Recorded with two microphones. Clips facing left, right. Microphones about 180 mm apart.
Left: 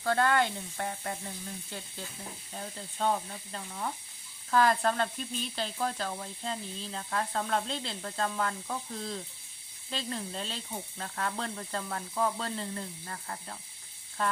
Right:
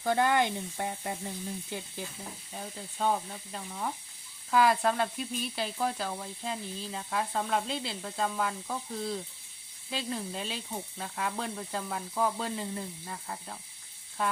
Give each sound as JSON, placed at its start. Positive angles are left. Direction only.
{"t": 0.0, "sound": "speech", "side_deg": -15}